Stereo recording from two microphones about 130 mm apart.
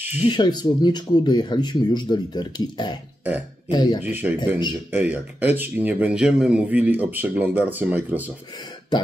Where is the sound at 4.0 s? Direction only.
15° right (ahead or behind).